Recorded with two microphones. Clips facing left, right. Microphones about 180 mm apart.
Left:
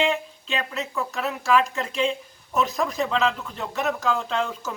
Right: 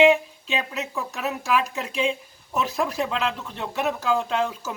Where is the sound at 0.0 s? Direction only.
15° right (ahead or behind).